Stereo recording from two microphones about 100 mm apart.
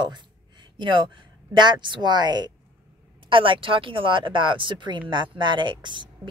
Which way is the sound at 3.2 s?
60° right (ahead or behind).